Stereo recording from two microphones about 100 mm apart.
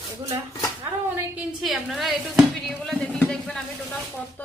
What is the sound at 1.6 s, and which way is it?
A woman's voice, 5° right (ahead or behind).